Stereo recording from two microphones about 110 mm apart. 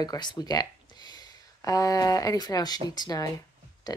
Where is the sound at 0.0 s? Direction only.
40° left (ahead or behind).